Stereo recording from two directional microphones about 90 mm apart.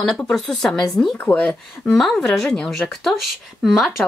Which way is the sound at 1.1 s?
20° left (ahead or behind).